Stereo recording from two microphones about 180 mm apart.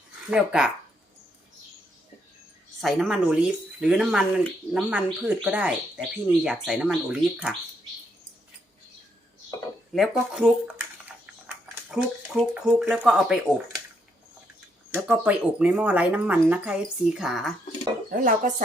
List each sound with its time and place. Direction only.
0.3 s speech: 5° right (ahead or behind)
2.8 s speech: centre (ahead or behind)
9.9 s speech: 5° right (ahead or behind)
14.9 s speech: 10° right (ahead or behind)
18.1 s speech: 45° right (ahead or behind)